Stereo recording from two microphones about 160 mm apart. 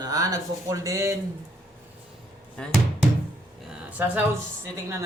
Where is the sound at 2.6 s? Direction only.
5° left (ahead or behind).